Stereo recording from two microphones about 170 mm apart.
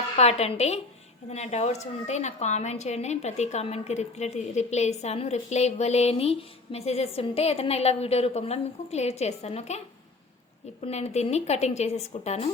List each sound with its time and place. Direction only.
0.2 s a woman's voice: 40° left (ahead or behind)